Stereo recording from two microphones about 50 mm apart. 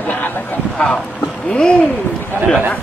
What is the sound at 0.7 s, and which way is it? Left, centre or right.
Speech, left.